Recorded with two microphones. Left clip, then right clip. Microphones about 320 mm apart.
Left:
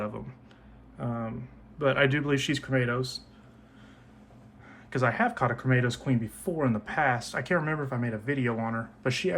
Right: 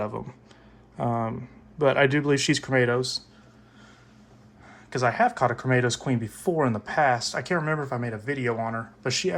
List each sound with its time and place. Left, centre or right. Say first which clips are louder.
0.0 s speech: right 4 dB; centre
4.9 s speech: right 4 dB; centre